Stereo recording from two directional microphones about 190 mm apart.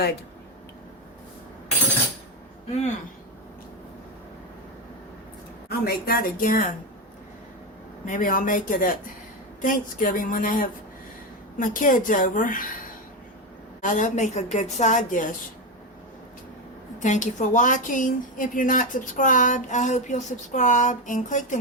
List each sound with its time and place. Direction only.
5.6 s a woman's voice: 55° left (ahead or behind)
8.0 s a woman's voice: 45° left (ahead or behind)
13.8 s speech: 45° left (ahead or behind)
17.0 s speech: 40° left (ahead or behind)